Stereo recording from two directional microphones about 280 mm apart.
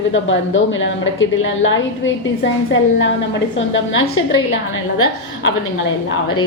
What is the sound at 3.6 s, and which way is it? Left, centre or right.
Speech, left.